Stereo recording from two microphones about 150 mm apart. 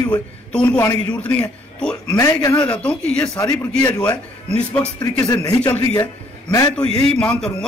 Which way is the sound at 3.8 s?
25° left (ahead or behind).